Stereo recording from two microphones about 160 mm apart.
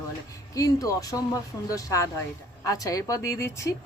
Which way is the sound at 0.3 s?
20° left (ahead or behind).